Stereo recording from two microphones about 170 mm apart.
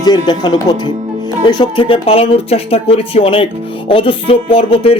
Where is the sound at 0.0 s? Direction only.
25° left (ahead or behind).